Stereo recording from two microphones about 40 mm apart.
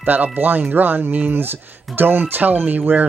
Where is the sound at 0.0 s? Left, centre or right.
Right.